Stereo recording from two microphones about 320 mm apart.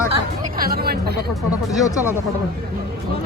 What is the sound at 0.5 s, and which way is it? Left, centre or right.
Music, right.